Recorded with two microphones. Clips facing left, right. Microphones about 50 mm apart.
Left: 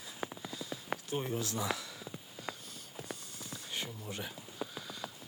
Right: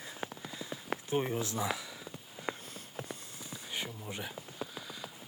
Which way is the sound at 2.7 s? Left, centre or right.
Right.